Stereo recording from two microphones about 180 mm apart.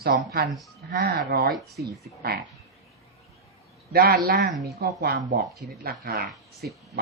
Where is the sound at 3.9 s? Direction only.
55° right (ahead or behind).